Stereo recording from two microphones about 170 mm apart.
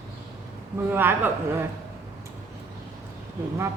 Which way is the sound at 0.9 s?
10° right (ahead or behind).